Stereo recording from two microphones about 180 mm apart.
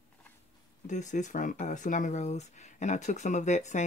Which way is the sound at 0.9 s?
40° left (ahead or behind).